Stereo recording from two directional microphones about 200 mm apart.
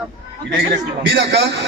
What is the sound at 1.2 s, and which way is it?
Speech, 60° right (ahead or behind).